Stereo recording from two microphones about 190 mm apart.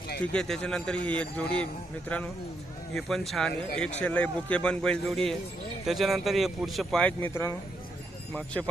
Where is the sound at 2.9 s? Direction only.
Centre (ahead or behind).